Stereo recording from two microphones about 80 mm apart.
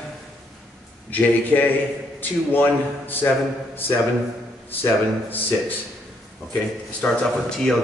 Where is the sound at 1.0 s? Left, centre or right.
Left.